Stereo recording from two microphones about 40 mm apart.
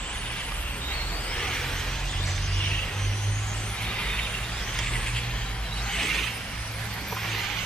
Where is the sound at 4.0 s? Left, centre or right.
Left.